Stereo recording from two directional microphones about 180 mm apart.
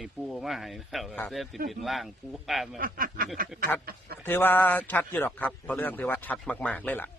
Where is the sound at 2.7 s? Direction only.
50° right (ahead or behind).